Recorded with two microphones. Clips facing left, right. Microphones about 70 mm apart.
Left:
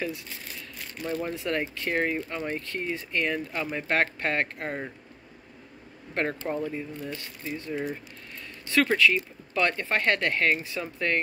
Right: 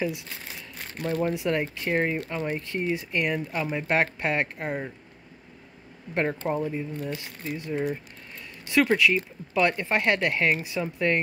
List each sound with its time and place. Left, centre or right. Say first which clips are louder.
0.7 s a sound: right 3 dB; right
1.3 s speech: right 3 dB; centre
6.5 s speech: right 3 dB; centre